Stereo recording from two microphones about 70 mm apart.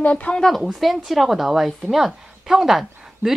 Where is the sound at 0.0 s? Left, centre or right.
Centre.